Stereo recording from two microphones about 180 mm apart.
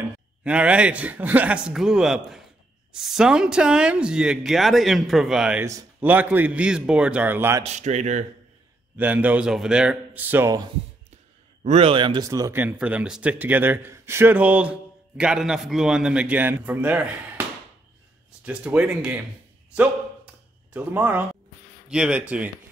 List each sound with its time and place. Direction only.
0.4 s speech: 5° right (ahead or behind)
7.6 s speech: 40° right (ahead or behind)
8.9 s speech: 10° right (ahead or behind)
11.6 s speech: 35° right (ahead or behind); by 17.1 s 10° right (ahead or behind)
18.4 s speech: 5° right (ahead or behind)
20.7 s speech: 10° right (ahead or behind)